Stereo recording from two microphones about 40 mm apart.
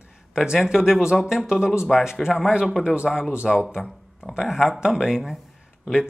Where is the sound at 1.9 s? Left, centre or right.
Centre.